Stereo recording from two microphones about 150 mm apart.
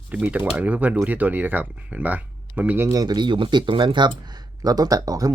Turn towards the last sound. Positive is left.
turn(degrees=-25)  # may be behind; listen again after turning